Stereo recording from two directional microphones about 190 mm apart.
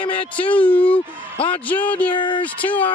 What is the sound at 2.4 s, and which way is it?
Speech, 10° left (ahead or behind).